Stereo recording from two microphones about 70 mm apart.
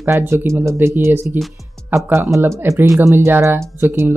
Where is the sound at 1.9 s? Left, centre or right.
Right.